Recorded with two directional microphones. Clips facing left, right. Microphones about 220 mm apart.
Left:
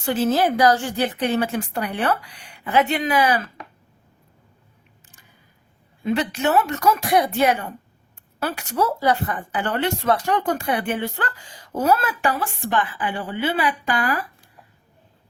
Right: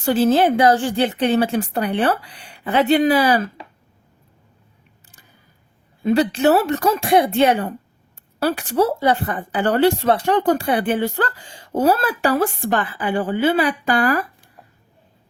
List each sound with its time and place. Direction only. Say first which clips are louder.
0.0 s a woman's voice: right 4 dB; 35° right (ahead or behind)
6.0 s a woman's voice: right 6 dB; 35° right (ahead or behind)